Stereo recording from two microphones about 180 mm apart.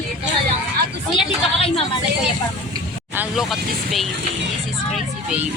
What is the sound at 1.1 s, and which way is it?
Speech, 30° left (ahead or behind).